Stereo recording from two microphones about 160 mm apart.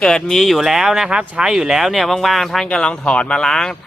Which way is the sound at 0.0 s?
5° left (ahead or behind).